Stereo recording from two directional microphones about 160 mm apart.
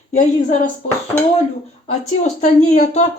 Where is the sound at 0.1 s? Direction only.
50° left (ahead or behind).